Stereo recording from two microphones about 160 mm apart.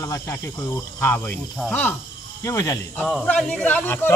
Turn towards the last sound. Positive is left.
turn(degrees=10)  # may be behind; listen again after turning